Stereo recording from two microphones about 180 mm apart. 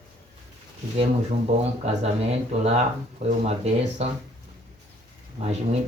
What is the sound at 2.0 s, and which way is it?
Speech, 35° right (ahead or behind).